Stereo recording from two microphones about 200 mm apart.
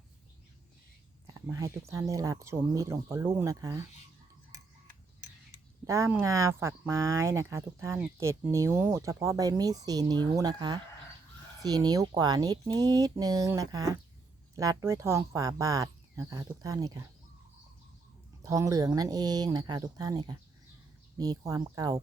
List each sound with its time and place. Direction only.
1.3 s speech: 15° right (ahead or behind)
5.8 s speech: 15° right (ahead or behind)
18.4 s speech: 15° right (ahead or behind)